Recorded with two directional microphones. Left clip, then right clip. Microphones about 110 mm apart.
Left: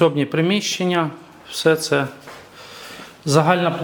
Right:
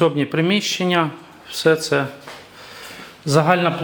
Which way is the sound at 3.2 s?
10° left (ahead or behind).